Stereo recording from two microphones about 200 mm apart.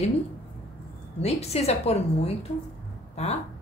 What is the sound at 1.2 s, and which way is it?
A woman's voice, 30° left (ahead or behind).